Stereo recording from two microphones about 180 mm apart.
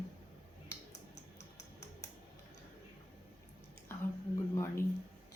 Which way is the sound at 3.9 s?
15° left (ahead or behind).